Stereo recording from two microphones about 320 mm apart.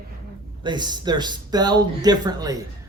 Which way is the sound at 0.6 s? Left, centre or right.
Centre.